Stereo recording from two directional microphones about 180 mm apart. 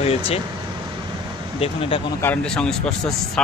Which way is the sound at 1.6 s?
30° left (ahead or behind).